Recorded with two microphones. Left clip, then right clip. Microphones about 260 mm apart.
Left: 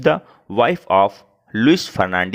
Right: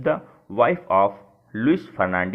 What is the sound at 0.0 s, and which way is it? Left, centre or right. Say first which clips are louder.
Speech: left 6 dB; left.